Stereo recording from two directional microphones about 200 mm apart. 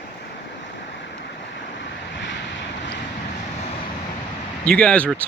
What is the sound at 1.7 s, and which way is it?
Vehicle, 65° left (ahead or behind).